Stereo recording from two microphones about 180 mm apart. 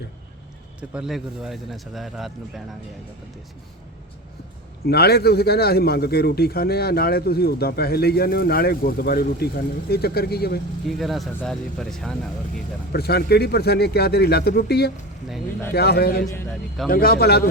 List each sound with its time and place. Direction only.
0.8 s a man's voice: 5° right (ahead or behind)
4.9 s a man's voice: 65° left (ahead or behind)
10.8 s a man's voice: centre (ahead or behind)
12.9 s a man's voice: 60° left (ahead or behind)